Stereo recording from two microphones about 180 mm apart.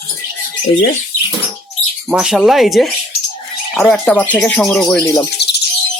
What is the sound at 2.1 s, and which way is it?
Speech, centre (ahead or behind).